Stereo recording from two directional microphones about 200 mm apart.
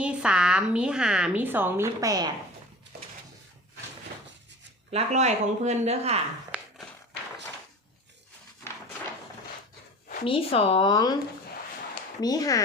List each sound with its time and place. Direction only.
0.0 s a woman's voice: 5° right (ahead or behind)
4.9 s speech: 35° right (ahead or behind)
6.5 s a sound: 5° right (ahead or behind)
10.2 s speech: 30° left (ahead or behind)
12.2 s speech: 20° left (ahead or behind)